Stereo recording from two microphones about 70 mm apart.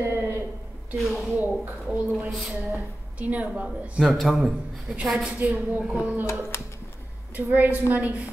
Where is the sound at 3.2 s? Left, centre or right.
Centre.